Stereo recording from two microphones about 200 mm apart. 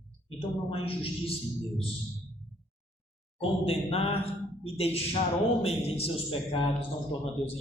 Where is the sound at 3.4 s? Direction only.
30° left (ahead or behind).